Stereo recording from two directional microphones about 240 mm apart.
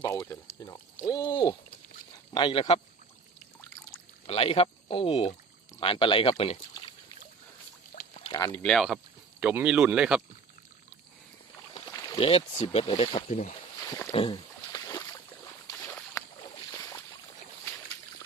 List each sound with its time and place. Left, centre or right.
0.0 s speech: centre
0.4 s pour: centre
1.0 s a sound: centre
2.3 s speech: centre
4.3 s speech: left
8.1 s pour: left
8.4 s speech: centre
8.6 s speech: centre
11.9 s speech: centre
13.9 s boat: centre
15.6 s a sound: centre
16.7 s boat: centre